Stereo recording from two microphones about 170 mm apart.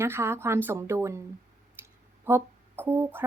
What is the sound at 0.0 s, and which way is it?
Speech, 15° right (ahead or behind).